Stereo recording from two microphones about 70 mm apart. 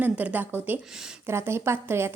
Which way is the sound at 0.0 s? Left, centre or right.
Right.